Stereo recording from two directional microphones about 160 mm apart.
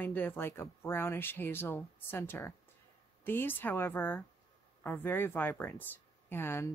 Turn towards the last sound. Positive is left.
turn(degrees=15)  # may be behind; listen again after turning